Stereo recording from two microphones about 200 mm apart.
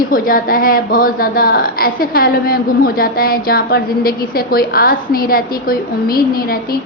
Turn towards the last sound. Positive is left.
turn(degrees=45)  # may be behind; listen again after turning